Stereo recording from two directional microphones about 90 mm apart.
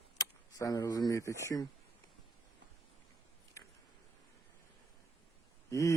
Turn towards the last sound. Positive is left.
turn(degrees=35)  # may be behind; listen again after turning